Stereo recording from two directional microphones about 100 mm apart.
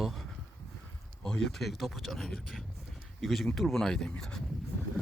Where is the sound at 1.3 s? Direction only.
5° left (ahead or behind).